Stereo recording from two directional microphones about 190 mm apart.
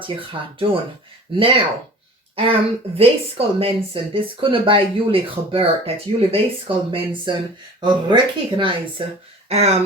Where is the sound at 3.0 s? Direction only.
30° right (ahead or behind).